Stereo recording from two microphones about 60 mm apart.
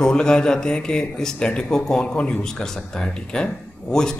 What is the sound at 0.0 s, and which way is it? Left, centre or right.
Speech, centre.